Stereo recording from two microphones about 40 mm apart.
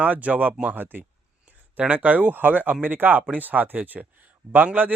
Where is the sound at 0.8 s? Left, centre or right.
Right.